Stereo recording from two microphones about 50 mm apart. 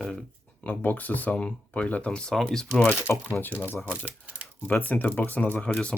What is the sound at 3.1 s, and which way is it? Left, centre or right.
Speech, left.